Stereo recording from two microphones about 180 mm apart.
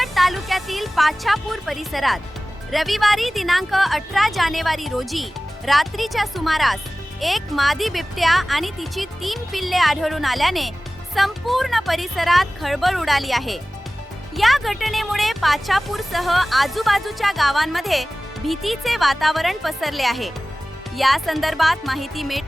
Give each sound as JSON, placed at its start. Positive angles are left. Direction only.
{"t": 0.0, "sound": "speech", "side_deg": 0}